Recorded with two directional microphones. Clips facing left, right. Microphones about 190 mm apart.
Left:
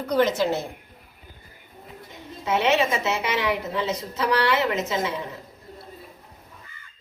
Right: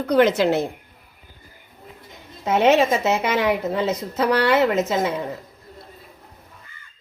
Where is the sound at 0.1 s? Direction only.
65° right (ahead or behind).